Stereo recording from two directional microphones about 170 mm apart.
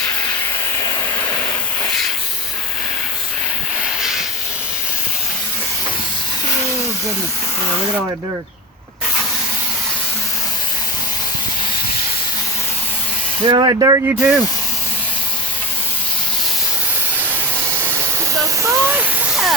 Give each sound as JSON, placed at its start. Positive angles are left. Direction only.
{"t": 4.0, "sound": "hiss", "side_deg": 0}
{"t": 13.4, "sound": "speech", "side_deg": -25}
{"t": 14.1, "sound": "speech", "side_deg": -5}
{"t": 18.6, "sound": "a sound", "side_deg": -15}